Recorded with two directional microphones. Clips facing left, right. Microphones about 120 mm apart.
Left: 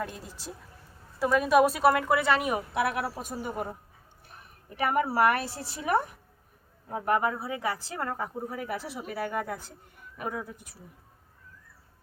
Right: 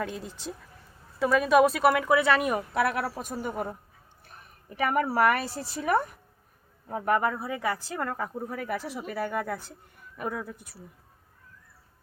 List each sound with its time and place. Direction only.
0.0 s speech: 5° left (ahead or behind)
2.2 s speech: 10° left (ahead or behind)
4.8 s speech: 10° left (ahead or behind)